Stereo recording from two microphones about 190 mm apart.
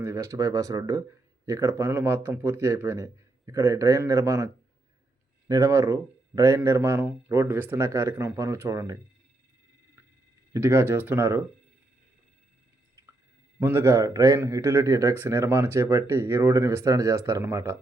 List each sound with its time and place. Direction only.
0.0 s a man's voice: 15° right (ahead or behind)
10.5 s a man's voice: 15° right (ahead or behind)
13.0 s a sound: 15° right (ahead or behind)
13.6 s a man's voice: 15° right (ahead or behind)